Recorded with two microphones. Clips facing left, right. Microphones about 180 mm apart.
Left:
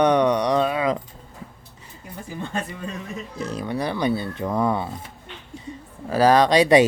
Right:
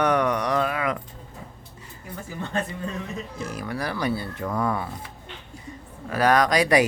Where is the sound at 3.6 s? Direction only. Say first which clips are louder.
Left 4 dB; 25° left (ahead or behind).